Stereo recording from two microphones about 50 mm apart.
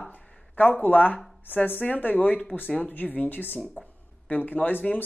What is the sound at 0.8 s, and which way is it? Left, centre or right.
Speech, left.